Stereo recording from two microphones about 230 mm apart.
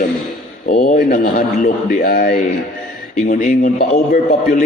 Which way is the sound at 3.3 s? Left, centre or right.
Left.